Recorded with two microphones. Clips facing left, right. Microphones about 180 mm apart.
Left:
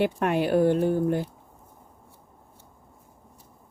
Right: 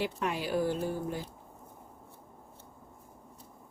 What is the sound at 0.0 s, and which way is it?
Speech, 60° left (ahead or behind).